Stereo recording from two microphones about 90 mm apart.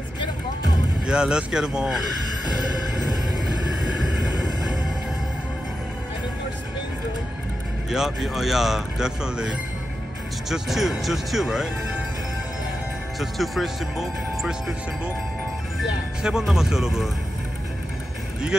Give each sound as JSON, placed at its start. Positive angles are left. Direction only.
{"t": 1.0, "sound": "speech", "side_deg": -10}
{"t": 4.0, "sound": "vehicle", "side_deg": 50}
{"t": 7.9, "sound": "speech", "side_deg": -5}
{"t": 10.5, "sound": "speech", "side_deg": 0}
{"t": 13.2, "sound": "speech", "side_deg": 0}
{"t": 16.2, "sound": "speech", "side_deg": -5}